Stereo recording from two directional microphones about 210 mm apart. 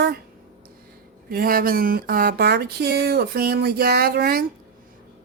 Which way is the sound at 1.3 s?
45° right (ahead or behind).